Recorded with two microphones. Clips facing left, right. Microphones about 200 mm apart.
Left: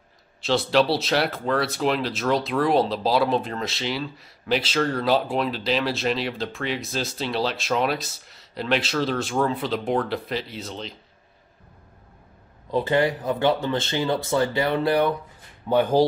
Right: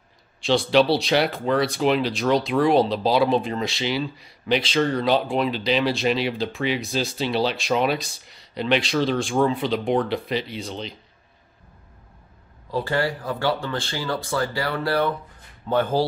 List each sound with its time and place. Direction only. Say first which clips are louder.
0.4 s speech: right 2 dB; centre (ahead or behind)
12.7 s speech: left 3 dB; 20° left (ahead or behind)